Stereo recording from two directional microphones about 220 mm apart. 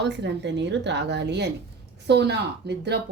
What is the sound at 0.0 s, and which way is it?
Speech, 50° right (ahead or behind).